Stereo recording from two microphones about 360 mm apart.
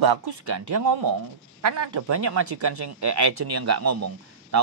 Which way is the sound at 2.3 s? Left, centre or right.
Right.